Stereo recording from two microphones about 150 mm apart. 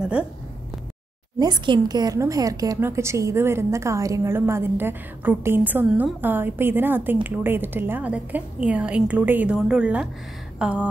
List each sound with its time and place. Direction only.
1.4 s a woman's voice: 30° right (ahead or behind)
5.9 s a woman's voice: centre (ahead or behind)
6.2 s a woman's voice: 15° right (ahead or behind)